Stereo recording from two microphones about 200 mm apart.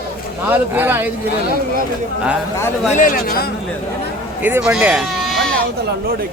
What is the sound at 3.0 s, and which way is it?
Speech, 45° left (ahead or behind).